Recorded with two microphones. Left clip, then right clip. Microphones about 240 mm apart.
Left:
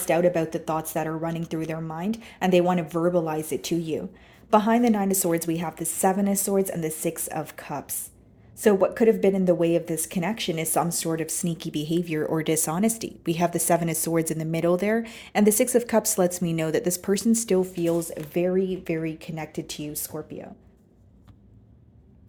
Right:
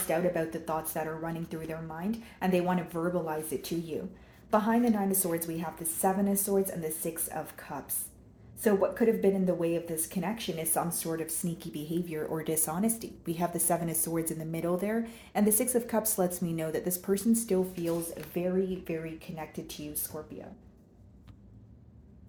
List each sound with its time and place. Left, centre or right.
0.1 s speech: left